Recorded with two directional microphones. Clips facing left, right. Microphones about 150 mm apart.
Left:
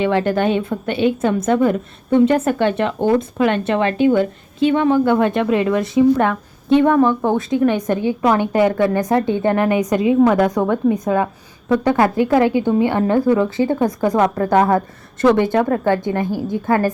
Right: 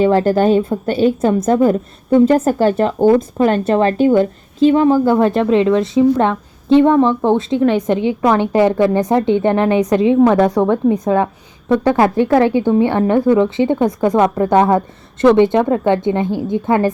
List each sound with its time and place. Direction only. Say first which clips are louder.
0.0 s a woman's voice: right 4 dB; 40° right (ahead or behind); by 16.9 s 20° right (ahead or behind)